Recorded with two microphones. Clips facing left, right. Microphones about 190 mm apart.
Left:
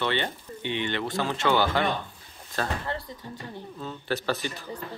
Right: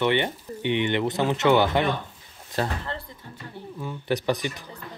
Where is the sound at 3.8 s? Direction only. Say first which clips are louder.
Right 4 dB; 15° right (ahead or behind).